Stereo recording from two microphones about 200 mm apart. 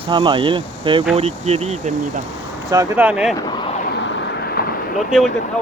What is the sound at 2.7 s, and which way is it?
Speech, 10° right (ahead or behind).